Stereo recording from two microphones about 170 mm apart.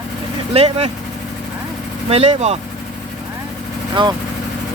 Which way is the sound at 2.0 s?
40° right (ahead or behind).